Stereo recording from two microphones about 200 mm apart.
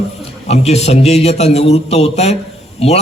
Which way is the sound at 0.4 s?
35° left (ahead or behind).